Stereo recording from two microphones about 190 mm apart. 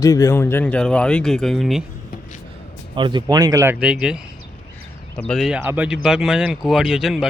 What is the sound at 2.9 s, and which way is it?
Speech, 25° right (ahead or behind).